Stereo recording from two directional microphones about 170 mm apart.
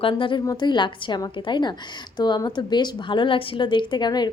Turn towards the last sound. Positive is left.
turn(degrees=25)  # may be behind; listen again after turning